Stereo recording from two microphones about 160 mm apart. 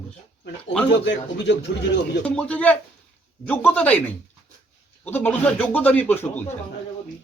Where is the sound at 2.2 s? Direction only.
5° left (ahead or behind).